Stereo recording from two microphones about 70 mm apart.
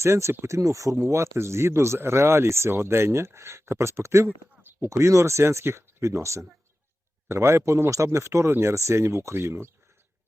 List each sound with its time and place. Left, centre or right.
0.0 s speech: right
0.9 s speech: right